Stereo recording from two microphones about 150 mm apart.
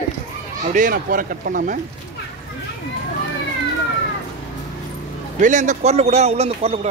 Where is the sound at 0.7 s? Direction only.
65° right (ahead or behind).